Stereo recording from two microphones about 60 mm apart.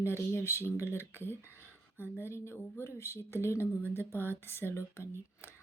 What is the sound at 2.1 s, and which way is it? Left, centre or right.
Speech, left.